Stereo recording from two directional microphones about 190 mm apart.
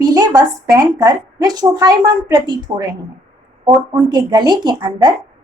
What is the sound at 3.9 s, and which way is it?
A woman's voice, 25° right (ahead or behind).